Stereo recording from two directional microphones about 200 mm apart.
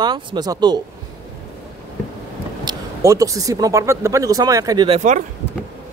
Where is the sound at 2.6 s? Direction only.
15° right (ahead or behind).